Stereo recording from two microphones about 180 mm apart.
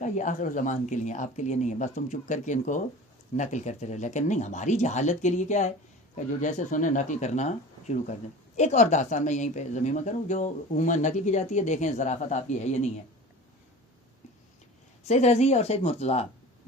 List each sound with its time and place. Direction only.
0.0 s speech: 45° left (ahead or behind)
15.0 s speech: 40° left (ahead or behind)